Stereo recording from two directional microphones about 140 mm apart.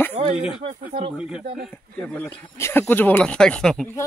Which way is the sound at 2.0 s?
15° left (ahead or behind).